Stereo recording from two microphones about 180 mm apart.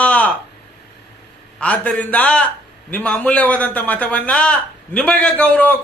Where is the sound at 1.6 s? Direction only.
5° left (ahead or behind).